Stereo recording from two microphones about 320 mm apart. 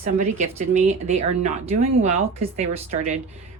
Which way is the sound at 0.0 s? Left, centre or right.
Right.